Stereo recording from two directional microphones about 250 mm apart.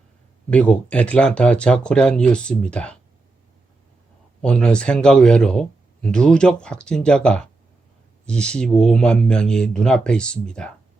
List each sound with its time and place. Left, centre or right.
0.5 s speech: centre
4.4 s speech: centre